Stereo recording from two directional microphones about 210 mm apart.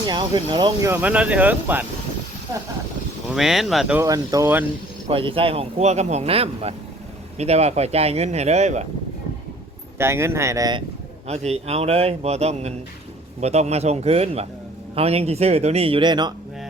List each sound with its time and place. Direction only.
0.0 s speech: 20° right (ahead or behind)
3.2 s speech: centre (ahead or behind)
4.0 s speech: 15° right (ahead or behind)
5.0 s speech: 25° right (ahead or behind)
10.0 s speech: 10° right (ahead or behind)
11.3 s speech: 30° right (ahead or behind)